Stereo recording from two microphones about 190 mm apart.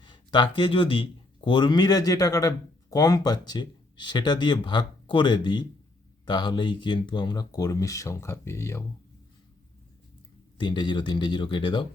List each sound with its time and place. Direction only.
0.0 s speech: 25° left (ahead or behind)
10.6 s speech: 25° left (ahead or behind)